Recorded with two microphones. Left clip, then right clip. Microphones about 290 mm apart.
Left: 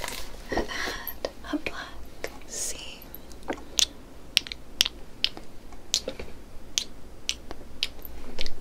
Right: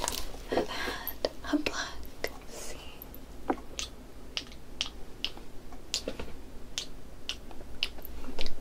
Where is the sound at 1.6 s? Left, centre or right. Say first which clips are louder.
Right 1 dB; centre.